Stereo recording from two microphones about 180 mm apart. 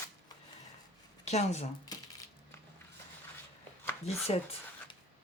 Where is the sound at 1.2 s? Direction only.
40° left (ahead or behind).